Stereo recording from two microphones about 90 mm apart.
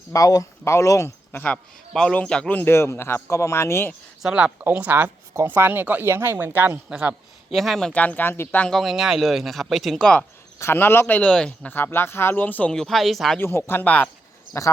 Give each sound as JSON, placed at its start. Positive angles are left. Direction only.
{"t": 0.1, "sound": "speech", "side_deg": 40}
{"t": 1.9, "sound": "a man's voice", "side_deg": 10}
{"t": 4.2, "sound": "speech", "side_deg": -5}
{"t": 7.5, "sound": "speech", "side_deg": 0}
{"t": 8.6, "sound": "speech", "side_deg": 0}
{"t": 10.0, "sound": "speech", "side_deg": 10}
{"t": 10.6, "sound": "a man's voice", "side_deg": 25}
{"t": 11.7, "sound": "a man's voice", "side_deg": 25}
{"t": 12.7, "sound": "speech", "side_deg": 5}
{"t": 13.4, "sound": "a man's voice", "side_deg": 25}
{"t": 14.5, "sound": "speech", "side_deg": 30}